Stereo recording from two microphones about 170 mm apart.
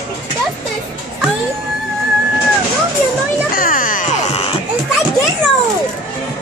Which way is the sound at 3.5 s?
55° left (ahead or behind).